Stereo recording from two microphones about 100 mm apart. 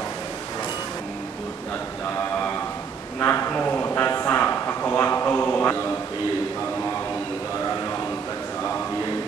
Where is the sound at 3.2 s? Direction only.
20° left (ahead or behind).